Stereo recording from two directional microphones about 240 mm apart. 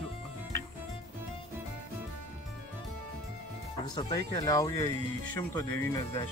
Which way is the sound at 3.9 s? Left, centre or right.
Centre.